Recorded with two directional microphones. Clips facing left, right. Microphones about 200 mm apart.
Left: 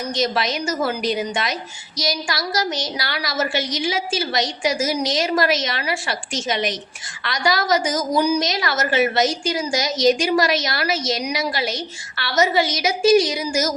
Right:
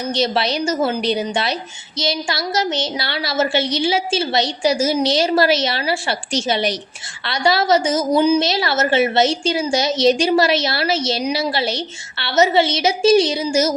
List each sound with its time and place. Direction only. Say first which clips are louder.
0.0 s a woman's voice: right 3 dB; 30° right (ahead or behind)